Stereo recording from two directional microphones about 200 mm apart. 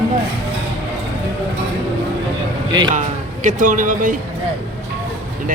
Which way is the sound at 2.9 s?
40° right (ahead or behind).